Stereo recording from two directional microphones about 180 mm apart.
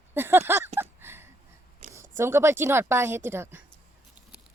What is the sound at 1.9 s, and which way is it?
A woman's voice, 15° right (ahead or behind).